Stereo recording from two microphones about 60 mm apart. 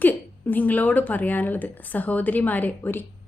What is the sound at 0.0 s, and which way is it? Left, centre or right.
A woman's voice, left.